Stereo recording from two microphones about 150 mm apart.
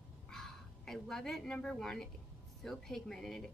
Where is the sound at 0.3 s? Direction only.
Centre (ahead or behind).